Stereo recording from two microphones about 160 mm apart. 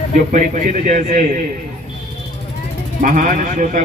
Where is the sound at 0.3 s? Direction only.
50° right (ahead or behind).